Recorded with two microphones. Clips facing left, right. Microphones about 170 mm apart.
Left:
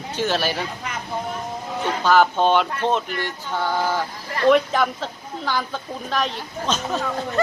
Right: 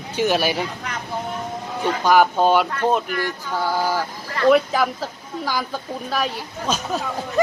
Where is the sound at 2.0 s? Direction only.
10° right (ahead or behind).